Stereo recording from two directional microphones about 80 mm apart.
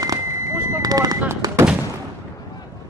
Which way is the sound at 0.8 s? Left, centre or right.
Right.